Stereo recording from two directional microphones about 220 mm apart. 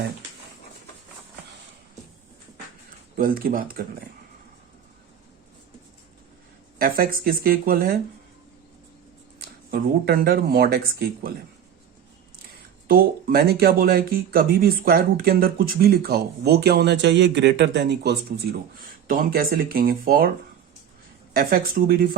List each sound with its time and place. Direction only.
3.2 s speech: 40° right (ahead or behind)
6.7 s speech: 40° right (ahead or behind)
9.4 s speech: 45° right (ahead or behind)
12.9 s speech: 45° right (ahead or behind)
21.3 s speech: 45° right (ahead or behind)